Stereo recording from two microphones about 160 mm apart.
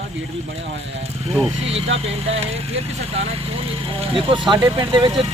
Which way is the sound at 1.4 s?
40° right (ahead or behind).